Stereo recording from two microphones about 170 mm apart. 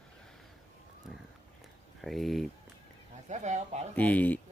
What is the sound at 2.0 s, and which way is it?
Speech, centre (ahead or behind).